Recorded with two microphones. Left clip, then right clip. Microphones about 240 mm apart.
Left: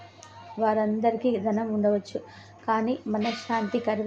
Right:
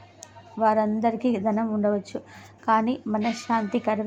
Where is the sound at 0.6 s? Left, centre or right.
Centre.